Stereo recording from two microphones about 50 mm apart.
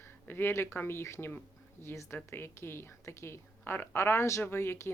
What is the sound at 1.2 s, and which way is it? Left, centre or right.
Speech, left.